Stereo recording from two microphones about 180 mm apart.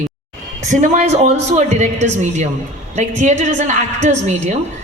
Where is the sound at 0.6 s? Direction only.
45° right (ahead or behind).